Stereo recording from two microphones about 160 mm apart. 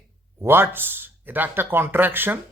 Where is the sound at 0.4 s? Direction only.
15° right (ahead or behind).